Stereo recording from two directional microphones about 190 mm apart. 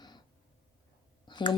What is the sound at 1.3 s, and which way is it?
Speech, 25° left (ahead or behind).